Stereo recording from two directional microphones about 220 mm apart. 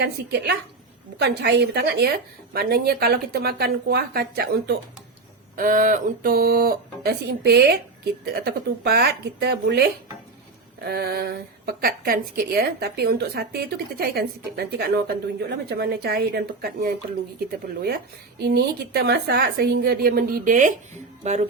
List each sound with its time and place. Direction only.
0.0 s a woman's voice: 50° right (ahead or behind)
10.8 s a woman's voice: 45° right (ahead or behind)
18.4 s a woman's voice: 45° right (ahead or behind)